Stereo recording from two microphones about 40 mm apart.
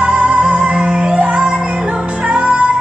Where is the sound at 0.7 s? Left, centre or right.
Right.